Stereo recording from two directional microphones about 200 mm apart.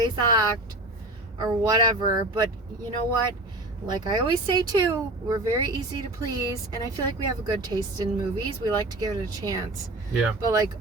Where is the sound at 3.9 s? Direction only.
20° right (ahead or behind).